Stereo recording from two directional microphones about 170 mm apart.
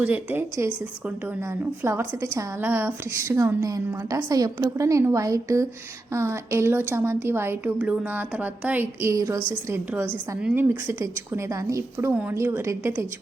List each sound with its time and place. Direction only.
0.0 s a woman's voice: 10° right (ahead or behind)
1.8 s a woman's voice: 15° right (ahead or behind)